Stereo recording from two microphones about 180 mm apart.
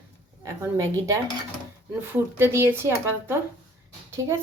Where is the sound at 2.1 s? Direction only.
15° right (ahead or behind).